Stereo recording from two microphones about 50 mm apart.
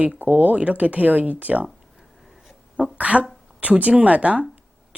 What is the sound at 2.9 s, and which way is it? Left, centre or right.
Speech, right.